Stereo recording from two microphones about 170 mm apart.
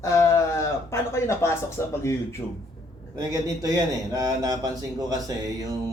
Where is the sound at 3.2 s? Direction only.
20° right (ahead or behind).